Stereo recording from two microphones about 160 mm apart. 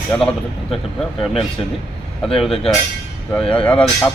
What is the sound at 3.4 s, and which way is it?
Speech, 35° left (ahead or behind).